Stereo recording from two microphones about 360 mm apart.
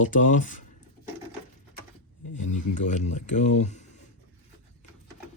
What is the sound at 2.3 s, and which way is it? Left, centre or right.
Speech, left.